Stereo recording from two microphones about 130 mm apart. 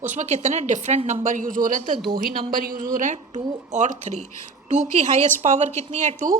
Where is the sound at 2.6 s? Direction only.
90° right.